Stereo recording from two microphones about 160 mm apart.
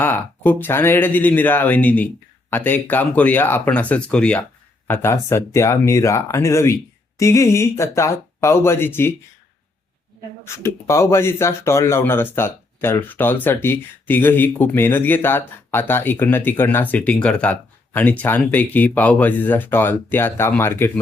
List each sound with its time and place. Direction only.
0.0 s speech: 10° left (ahead or behind)
10.4 s speech: 15° left (ahead or behind)